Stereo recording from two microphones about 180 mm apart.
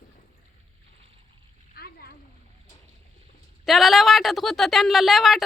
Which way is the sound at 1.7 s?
60° left (ahead or behind).